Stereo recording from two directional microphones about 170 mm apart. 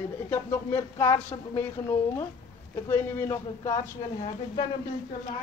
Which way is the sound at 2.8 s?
20° left (ahead or behind).